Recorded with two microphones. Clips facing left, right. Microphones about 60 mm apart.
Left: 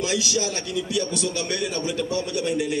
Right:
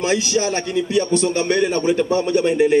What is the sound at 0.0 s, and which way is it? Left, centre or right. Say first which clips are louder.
A man's voice: right 6 dB; right.